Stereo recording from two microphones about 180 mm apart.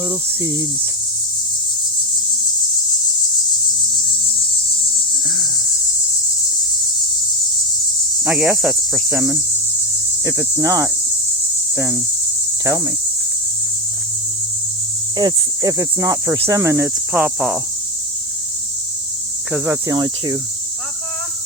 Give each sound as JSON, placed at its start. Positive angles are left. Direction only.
{"t": 0.1, "sound": "speech", "side_deg": -20}
{"t": 8.2, "sound": "speech", "side_deg": -10}
{"t": 11.7, "sound": "cricket", "side_deg": -15}
{"t": 12.6, "sound": "speech", "side_deg": -15}
{"t": 15.2, "sound": "speech", "side_deg": -20}
{"t": 19.5, "sound": "speech", "side_deg": -10}